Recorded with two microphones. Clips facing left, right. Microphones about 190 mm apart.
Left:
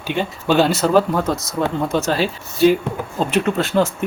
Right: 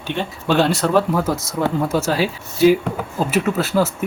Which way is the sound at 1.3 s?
25° right (ahead or behind).